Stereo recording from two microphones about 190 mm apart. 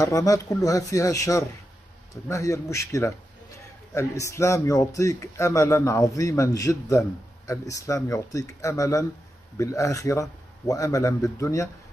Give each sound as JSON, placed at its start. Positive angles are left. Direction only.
{"t": 0.0, "sound": "speech", "side_deg": 15}